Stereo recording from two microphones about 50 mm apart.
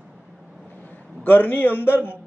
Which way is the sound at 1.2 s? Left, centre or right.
Left.